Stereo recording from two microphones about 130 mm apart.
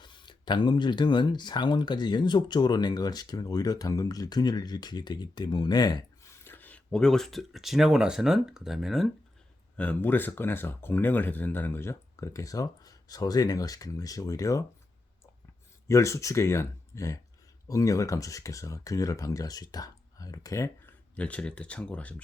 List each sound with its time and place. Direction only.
0.0 s speech: 35° left (ahead or behind)
6.4 s speech: 15° left (ahead or behind); by 9.0 s centre (ahead or behind)
9.7 s speech: 10° left (ahead or behind); by 14.6 s 25° left (ahead or behind)
15.9 s speech: 20° left (ahead or behind)
21.2 s speech: 10° left (ahead or behind)